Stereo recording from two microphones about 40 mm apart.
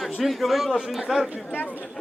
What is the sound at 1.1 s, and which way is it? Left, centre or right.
Speech, centre.